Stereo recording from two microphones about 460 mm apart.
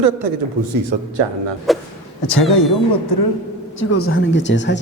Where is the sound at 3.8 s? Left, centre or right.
Left.